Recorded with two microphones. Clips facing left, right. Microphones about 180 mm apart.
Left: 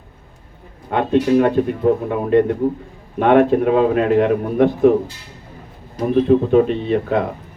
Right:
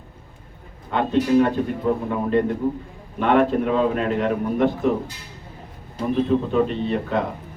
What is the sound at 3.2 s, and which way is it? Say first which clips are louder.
A man's voice: left 5 dB; 55° left (ahead or behind).